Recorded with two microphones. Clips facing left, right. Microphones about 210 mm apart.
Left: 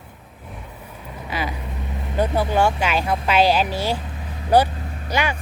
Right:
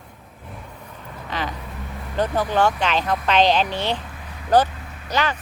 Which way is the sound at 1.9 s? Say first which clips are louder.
Left 3 dB; 20° left (ahead or behind).